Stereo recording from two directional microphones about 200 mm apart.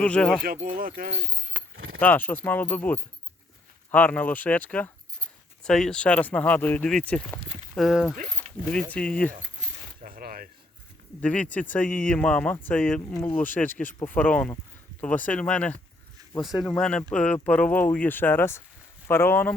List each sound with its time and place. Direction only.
0.0 s speech: 5° left (ahead or behind)
0.4 s speech: 45° right (ahead or behind)
1.7 s keys jangling: 90° right
2.0 s speech: 10° left (ahead or behind)
8.4 s keys jangling: 30° right (ahead or behind)
8.9 s speech: 5° left (ahead or behind)
10.0 s coin: 45° right (ahead or behind)
11.2 s speech: 5° left (ahead or behind)